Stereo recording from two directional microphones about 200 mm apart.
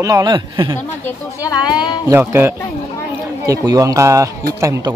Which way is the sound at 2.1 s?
10° right (ahead or behind).